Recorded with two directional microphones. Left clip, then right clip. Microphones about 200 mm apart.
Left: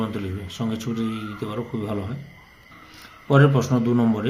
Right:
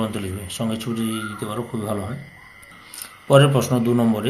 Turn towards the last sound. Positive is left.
turn(degrees=5)  # may be behind; listen again after turning